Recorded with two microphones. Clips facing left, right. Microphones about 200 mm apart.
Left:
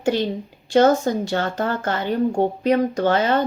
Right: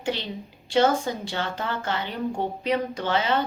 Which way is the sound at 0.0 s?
45° left (ahead or behind).